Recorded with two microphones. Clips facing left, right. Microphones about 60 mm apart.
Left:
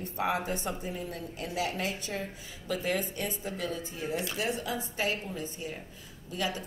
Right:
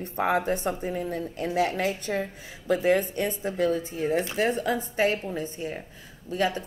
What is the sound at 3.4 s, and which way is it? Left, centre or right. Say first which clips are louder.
A woman's voice: right 10 dB; right.